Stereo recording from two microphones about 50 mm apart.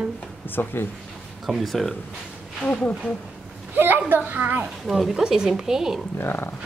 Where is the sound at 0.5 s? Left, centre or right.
Left.